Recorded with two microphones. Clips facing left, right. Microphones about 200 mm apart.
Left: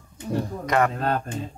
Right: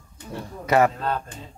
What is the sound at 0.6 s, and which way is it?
Speech, 5° right (ahead or behind).